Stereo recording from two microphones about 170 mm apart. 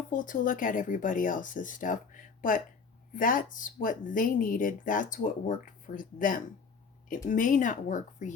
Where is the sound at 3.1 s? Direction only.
50° left (ahead or behind).